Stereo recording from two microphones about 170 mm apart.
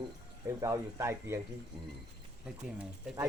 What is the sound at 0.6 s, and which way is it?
Speech, 20° right (ahead or behind).